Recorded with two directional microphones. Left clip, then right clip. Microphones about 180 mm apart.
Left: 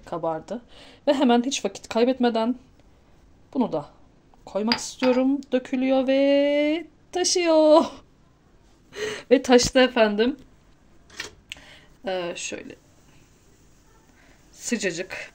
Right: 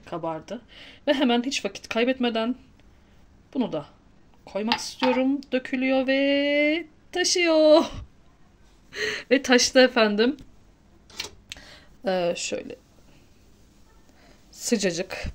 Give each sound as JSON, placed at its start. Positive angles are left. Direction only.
{"t": 0.0, "sound": "a sound", "side_deg": 10}
{"t": 3.4, "sound": "a woman's voice", "side_deg": 5}
{"t": 4.7, "sound": "a sound", "side_deg": 10}
{"t": 9.8, "sound": "speech", "side_deg": -10}
{"t": 11.6, "sound": "speech", "side_deg": -35}
{"t": 14.6, "sound": "speech", "side_deg": -25}